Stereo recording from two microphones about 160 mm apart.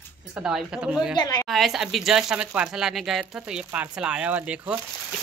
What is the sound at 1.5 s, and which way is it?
Speech, centre (ahead or behind).